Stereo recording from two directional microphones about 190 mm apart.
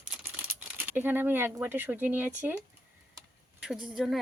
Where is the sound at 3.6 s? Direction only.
5° right (ahead or behind).